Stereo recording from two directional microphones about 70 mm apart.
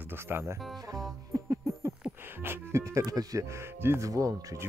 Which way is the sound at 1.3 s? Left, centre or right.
Right.